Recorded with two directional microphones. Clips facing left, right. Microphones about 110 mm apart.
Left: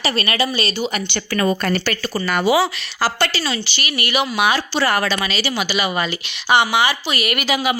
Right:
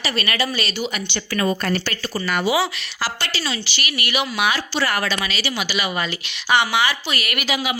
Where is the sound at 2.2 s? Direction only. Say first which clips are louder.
Left 4 dB; 45° left (ahead or behind).